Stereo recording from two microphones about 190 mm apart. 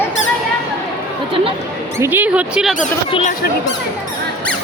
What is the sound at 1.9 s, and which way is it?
Speech, 10° right (ahead or behind).